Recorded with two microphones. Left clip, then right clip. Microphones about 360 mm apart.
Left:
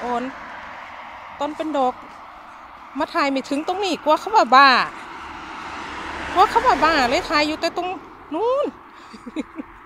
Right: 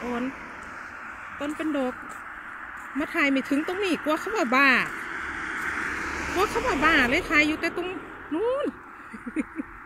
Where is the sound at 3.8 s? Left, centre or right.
Centre.